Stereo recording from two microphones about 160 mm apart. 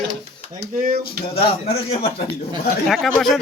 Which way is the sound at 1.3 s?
35° left (ahead or behind).